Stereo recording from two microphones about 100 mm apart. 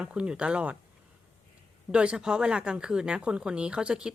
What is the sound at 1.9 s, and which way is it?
Speech, 10° right (ahead or behind).